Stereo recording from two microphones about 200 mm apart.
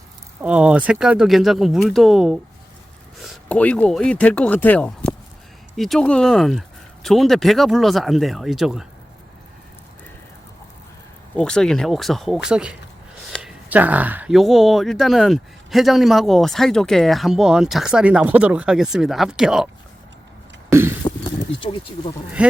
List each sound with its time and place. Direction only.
0.4 s speech: 5° right (ahead or behind)
11.3 s speech: 5° left (ahead or behind)
20.7 s a sound: 10° right (ahead or behind)
21.6 s speech: 25° left (ahead or behind)
22.4 s speech: 5° right (ahead or behind)